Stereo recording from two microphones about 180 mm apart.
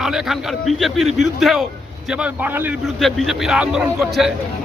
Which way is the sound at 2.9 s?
Centre (ahead or behind).